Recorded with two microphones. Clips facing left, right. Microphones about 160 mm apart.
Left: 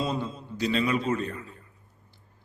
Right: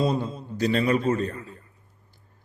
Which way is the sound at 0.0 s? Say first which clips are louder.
Right 5 dB; 40° right (ahead or behind).